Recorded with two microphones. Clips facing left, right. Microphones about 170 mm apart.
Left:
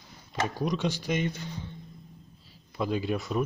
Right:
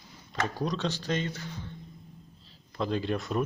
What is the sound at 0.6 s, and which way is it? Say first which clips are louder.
Speech: left 3 dB; 10° left (ahead or behind).